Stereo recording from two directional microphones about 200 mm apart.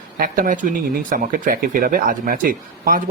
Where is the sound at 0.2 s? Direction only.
45° right (ahead or behind).